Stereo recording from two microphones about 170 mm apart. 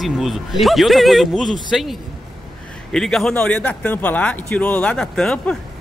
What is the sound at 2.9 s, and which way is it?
Speech, 5° left (ahead or behind).